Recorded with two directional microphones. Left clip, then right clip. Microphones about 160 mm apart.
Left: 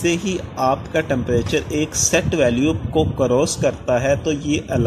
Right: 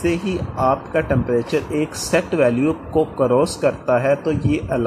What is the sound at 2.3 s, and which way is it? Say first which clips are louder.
A man's voice: even; 15° left (ahead or behind).